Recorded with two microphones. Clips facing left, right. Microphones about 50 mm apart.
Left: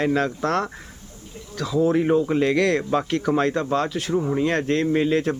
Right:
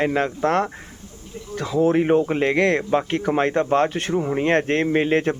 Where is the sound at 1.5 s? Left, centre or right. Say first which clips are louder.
Right 2 dB; right.